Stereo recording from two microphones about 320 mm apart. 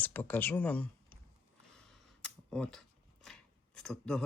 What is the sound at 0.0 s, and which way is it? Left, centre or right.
Speech, centre.